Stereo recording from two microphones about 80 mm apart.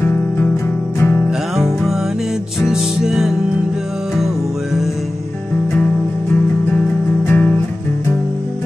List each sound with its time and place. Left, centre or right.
2.6 s music: centre
7.2 s music: left